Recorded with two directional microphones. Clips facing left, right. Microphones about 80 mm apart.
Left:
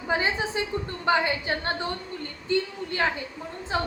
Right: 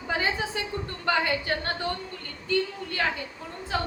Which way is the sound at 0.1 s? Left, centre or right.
Left.